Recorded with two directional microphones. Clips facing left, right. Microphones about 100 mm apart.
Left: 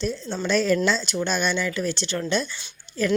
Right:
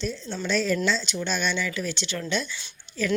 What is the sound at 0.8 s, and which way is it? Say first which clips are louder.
A woman's voice: left 3 dB; 50° left (ahead or behind).